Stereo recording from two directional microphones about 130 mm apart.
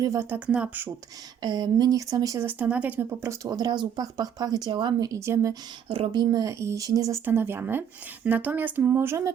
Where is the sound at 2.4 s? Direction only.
10° right (ahead or behind).